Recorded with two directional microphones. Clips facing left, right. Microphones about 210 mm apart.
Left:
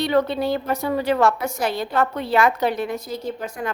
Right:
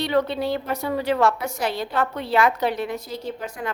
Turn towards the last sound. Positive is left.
turn(degrees=45)  # may be behind; listen again after turning